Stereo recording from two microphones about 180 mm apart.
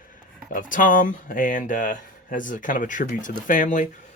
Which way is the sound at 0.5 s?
50° left (ahead or behind).